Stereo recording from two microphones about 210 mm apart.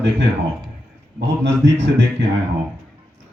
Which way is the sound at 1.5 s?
60° right (ahead or behind).